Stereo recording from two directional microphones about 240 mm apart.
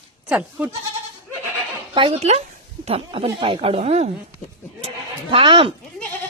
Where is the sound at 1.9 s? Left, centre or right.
Right.